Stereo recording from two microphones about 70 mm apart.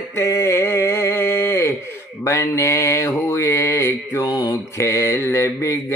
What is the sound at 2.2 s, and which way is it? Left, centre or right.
Mantra, left.